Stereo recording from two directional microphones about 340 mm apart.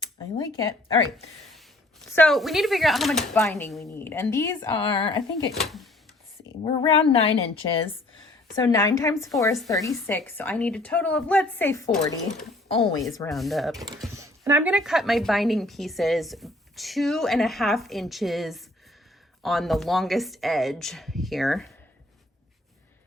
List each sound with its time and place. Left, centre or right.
0.0 s a sound: centre
2.1 s speech: centre
5.5 s speech: centre
6.7 s a woman's voice: centre
13.0 s a woman's voice: centre